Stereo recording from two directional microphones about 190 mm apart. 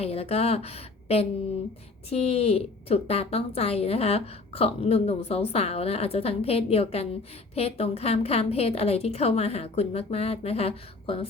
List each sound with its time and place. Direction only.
0.0 s a woman's voice: 30° left (ahead or behind)